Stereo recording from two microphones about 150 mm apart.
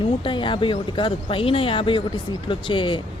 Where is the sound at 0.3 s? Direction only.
35° left (ahead or behind).